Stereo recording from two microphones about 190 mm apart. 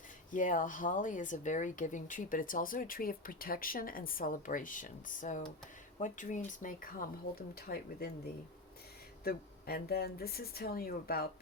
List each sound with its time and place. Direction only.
0.3 s speech: 45° left (ahead or behind)
9.2 s speech: 50° left (ahead or behind)